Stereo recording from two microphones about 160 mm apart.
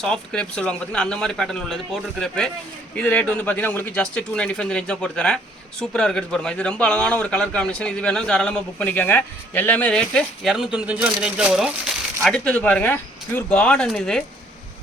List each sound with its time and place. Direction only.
0.0 s a man's voice: 5° left (ahead or behind)